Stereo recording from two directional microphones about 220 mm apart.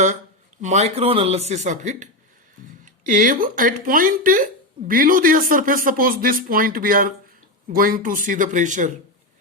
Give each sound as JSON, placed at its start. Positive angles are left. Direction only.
{"t": 0.6, "sound": "speech", "side_deg": -30}